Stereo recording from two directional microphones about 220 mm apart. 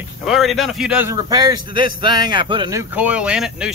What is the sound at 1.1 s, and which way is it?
Speech, 20° right (ahead or behind).